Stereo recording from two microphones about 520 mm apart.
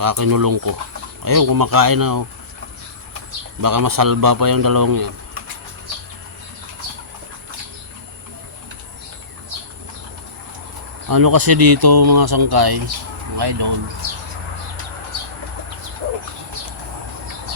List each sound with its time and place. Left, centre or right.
0.0 s speech: right
3.6 s speech: right
11.1 s speech: right